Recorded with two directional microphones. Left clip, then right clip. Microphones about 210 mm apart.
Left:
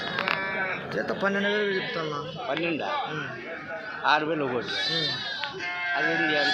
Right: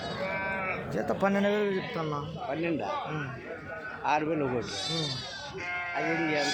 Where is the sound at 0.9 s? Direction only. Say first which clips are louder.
Even; 65° right (ahead or behind).